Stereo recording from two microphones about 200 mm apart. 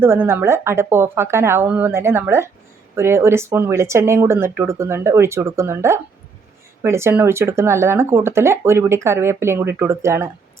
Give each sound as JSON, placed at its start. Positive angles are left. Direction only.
{"t": 0.0, "sound": "speech", "side_deg": -10}